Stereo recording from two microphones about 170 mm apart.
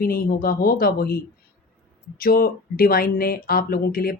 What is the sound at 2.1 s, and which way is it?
Speech, 60° left (ahead or behind).